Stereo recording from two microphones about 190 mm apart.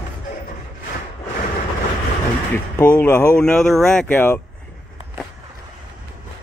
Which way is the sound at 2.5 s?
10° left (ahead or behind).